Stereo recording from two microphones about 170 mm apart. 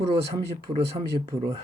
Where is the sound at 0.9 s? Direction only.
35° right (ahead or behind).